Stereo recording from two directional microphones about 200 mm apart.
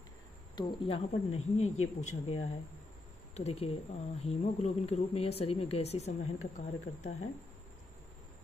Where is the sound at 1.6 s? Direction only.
90° left.